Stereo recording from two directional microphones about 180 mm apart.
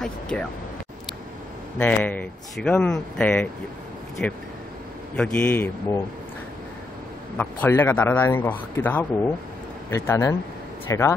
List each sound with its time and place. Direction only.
0.0 s speech: 5° left (ahead or behind)
1.8 s a man's voice: 10° left (ahead or behind)
7.3 s a man's voice: 10° left (ahead or behind)